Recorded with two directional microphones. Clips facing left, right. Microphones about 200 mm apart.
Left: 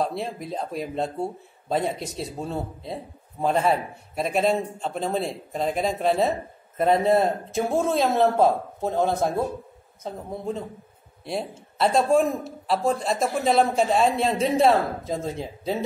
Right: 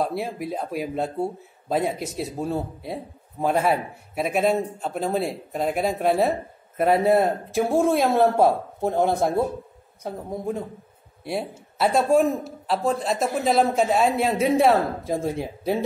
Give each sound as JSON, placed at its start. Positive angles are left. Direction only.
{"t": 0.0, "sound": "a man's voice", "side_deg": -5}